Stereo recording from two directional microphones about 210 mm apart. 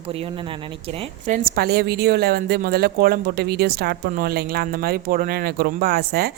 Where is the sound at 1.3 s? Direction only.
40° right (ahead or behind).